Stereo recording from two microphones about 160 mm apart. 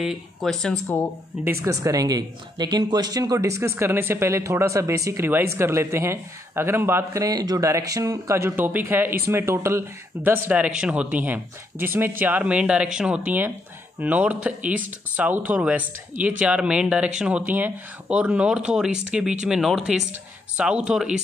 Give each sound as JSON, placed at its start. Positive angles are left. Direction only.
{"t": 0.0, "sound": "speech", "side_deg": 0}
{"t": 1.4, "sound": "speech", "side_deg": -15}